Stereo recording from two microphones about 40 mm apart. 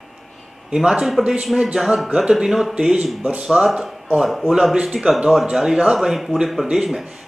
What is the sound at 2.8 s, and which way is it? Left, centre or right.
Speech, right.